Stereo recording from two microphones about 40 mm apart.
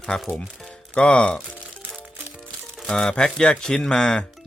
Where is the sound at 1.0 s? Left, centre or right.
Left.